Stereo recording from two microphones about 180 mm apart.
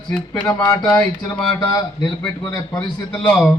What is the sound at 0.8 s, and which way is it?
Speech, 5° left (ahead or behind).